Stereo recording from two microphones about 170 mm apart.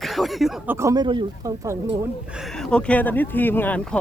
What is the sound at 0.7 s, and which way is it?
Speech, 20° right (ahead or behind).